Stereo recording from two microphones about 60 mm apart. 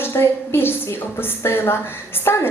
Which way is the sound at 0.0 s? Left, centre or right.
Left.